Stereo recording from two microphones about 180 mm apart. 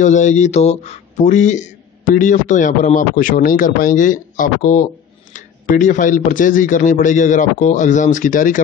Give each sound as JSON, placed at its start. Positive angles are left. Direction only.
{"t": 0.0, "sound": "speech", "side_deg": 40}